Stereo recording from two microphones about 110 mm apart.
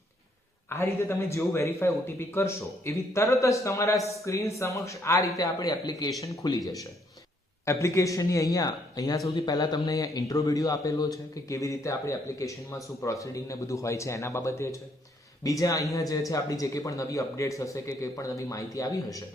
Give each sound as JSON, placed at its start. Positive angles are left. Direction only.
{"t": 0.7, "sound": "speech", "side_deg": 20}
{"t": 7.6, "sound": "speech", "side_deg": 25}